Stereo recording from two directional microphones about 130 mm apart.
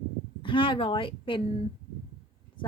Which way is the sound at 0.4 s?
40° left (ahead or behind).